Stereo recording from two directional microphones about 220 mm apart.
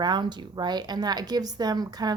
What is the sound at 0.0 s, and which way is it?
Speech, 20° right (ahead or behind).